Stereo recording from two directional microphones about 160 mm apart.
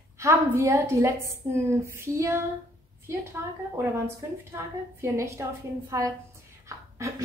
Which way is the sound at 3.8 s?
15° right (ahead or behind).